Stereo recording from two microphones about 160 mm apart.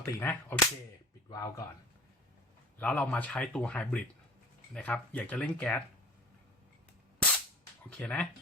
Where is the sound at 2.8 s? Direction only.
10° left (ahead or behind).